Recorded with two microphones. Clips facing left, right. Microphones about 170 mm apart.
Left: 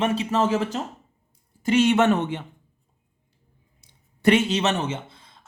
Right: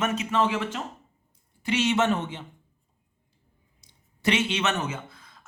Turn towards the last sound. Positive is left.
turn(degrees=30)  # may be behind; listen again after turning